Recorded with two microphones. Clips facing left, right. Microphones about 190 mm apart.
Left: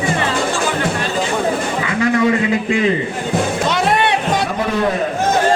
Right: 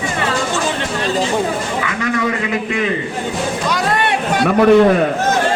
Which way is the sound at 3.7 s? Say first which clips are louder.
Left 1 dB; 25° left (ahead or behind).